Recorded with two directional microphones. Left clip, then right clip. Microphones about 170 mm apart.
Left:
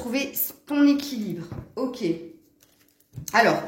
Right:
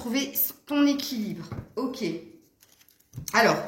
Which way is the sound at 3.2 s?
45° left (ahead or behind).